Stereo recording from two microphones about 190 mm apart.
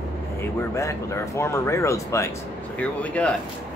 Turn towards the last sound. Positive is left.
turn(degrees=5)  # may be behind; listen again after turning